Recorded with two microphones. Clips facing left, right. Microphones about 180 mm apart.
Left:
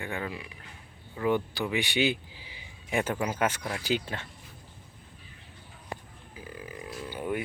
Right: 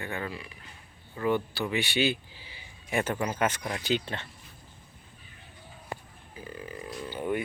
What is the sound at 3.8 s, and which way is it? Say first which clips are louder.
Speech: right 1 dB; 10° left (ahead or behind).